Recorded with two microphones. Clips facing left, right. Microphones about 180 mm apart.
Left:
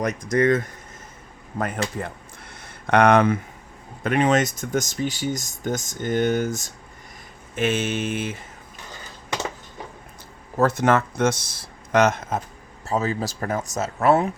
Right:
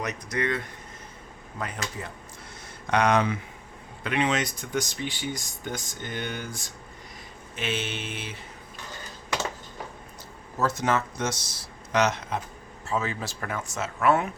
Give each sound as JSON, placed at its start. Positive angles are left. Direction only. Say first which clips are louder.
{"t": 0.0, "sound": "speech", "louder": "left 9 dB", "side_deg": 45}
{"t": 2.8, "sound": "speech", "louder": "left 6 dB", "side_deg": 55}
{"t": 10.6, "sound": "speech", "louder": "left 6 dB", "side_deg": 55}
{"t": 12.9, "sound": "speech", "louder": "left 5 dB", "side_deg": 40}